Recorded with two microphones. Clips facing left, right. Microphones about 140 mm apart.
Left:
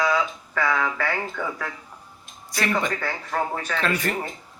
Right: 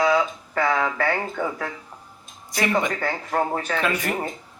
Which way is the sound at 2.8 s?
25° right (ahead or behind).